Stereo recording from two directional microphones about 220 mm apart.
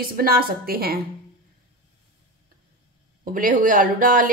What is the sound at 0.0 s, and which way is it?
Speech, 40° right (ahead or behind).